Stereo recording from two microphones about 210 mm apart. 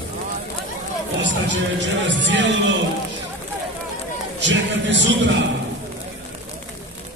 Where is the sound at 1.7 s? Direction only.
60° right (ahead or behind).